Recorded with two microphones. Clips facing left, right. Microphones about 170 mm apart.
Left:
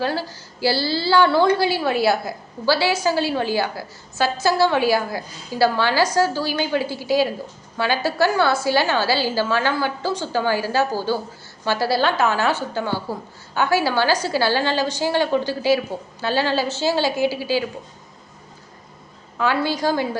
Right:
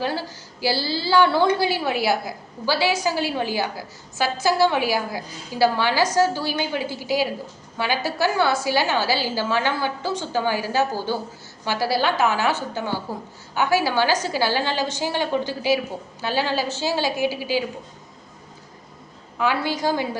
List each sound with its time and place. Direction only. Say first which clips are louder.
0.0 s a woman's voice: left 2 dB; 15° right (ahead or behind)
19.4 s a woman's voice: left 2 dB; 15° right (ahead or behind)